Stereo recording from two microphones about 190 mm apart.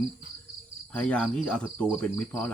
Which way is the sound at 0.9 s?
5° left (ahead or behind).